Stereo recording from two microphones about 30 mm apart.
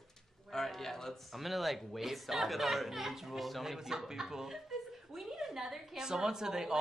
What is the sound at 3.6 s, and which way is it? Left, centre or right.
Speech, centre.